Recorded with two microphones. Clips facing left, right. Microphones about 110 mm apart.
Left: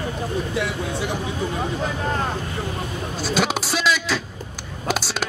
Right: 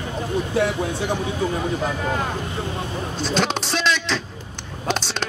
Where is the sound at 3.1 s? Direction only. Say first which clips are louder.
Even; 5° left (ahead or behind).